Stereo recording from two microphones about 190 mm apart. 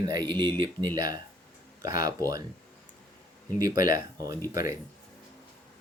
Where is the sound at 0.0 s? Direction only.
20° right (ahead or behind).